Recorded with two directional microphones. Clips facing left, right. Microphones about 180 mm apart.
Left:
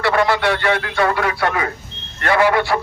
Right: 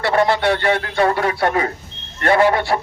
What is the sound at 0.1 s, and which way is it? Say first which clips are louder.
Speech: right 2 dB; 30° right (ahead or behind).